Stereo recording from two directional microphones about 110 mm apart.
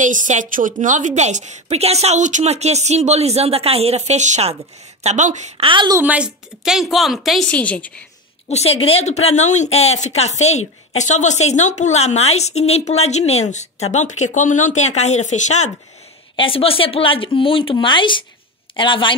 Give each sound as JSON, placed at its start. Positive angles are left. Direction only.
{"t": 0.3, "sound": "a woman's voice", "side_deg": -90}
{"t": 5.7, "sound": "a woman's voice", "side_deg": -45}
{"t": 5.9, "sound": "a woman's voice", "side_deg": -10}
{"t": 7.4, "sound": "a woman's voice", "side_deg": 10}
{"t": 8.5, "sound": "a woman's voice", "side_deg": 70}
{"t": 16.3, "sound": "speech", "side_deg": 55}